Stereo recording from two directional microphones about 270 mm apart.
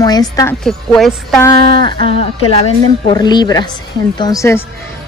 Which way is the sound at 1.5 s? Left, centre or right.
Right.